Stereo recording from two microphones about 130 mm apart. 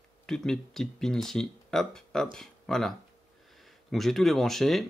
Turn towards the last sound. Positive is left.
turn(degrees=5)  # may be behind; listen again after turning